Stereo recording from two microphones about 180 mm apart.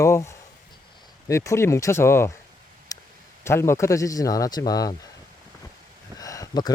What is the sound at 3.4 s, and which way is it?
Speech, 15° left (ahead or behind).